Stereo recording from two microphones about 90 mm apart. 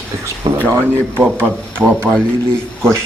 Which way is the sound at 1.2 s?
25° right (ahead or behind).